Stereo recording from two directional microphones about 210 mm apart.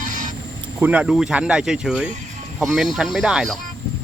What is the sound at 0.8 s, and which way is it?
Speech, 5° right (ahead or behind).